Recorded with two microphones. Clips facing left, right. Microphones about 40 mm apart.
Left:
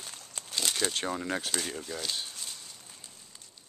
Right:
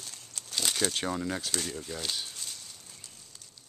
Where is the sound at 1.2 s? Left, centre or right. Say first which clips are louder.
Left 1 dB; left.